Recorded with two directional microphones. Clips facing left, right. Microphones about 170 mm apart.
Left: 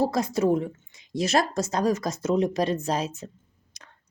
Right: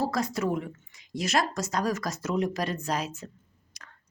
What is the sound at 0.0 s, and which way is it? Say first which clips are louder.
Speech: left 5 dB; 25° left (ahead or behind).